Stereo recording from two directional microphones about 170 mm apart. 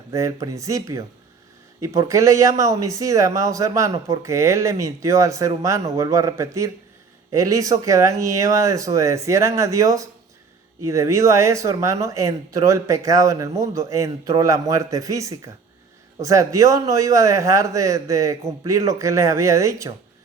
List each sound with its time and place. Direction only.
0.1 s speech: 20° right (ahead or behind)